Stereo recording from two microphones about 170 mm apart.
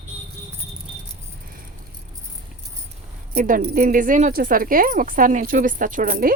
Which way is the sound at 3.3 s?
55° right (ahead or behind).